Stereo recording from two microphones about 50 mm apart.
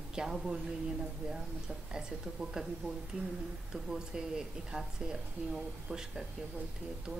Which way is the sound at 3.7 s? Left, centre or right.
Centre.